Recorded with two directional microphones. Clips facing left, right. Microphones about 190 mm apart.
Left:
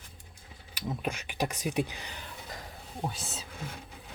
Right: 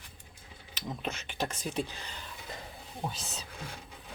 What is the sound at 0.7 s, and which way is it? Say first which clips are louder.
Speech: left 3 dB; 10° left (ahead or behind).